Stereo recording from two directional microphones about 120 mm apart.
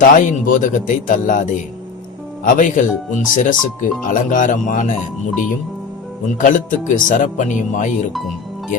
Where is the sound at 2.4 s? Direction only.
90° left.